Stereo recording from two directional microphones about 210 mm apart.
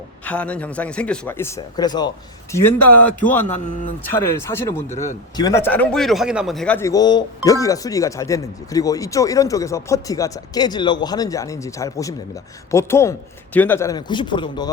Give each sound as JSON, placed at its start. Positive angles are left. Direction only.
{"t": 0.3, "sound": "speech", "side_deg": 5}